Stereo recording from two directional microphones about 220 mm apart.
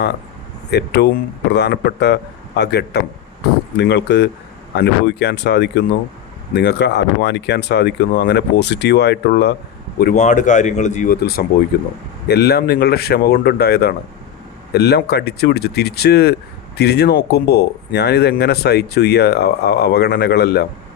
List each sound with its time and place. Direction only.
0.7 s speech: 50° left (ahead or behind)
10.0 s speech: 35° left (ahead or behind)